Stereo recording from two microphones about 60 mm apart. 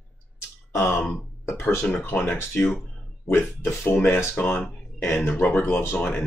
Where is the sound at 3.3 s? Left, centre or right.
Left.